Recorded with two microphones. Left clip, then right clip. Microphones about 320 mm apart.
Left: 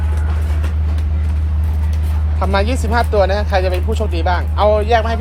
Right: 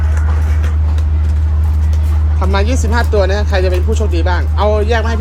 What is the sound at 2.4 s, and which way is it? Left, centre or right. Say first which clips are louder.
Speech: even; centre.